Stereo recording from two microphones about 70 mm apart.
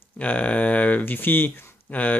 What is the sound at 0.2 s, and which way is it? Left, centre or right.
Speech, left.